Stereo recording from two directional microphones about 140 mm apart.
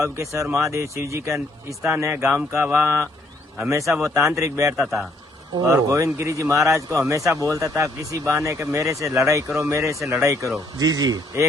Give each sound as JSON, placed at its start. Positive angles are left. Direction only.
{"t": 0.0, "sound": "speech", "side_deg": -20}